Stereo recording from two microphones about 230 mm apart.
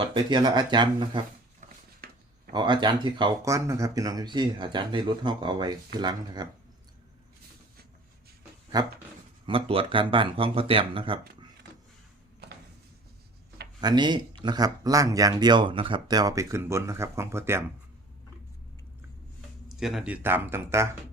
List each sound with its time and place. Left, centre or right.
0.0 s speech: centre
2.0 s a sound: right
2.5 s speech: centre
8.7 s speech: centre
13.8 s speech: centre
19.6 s speech: centre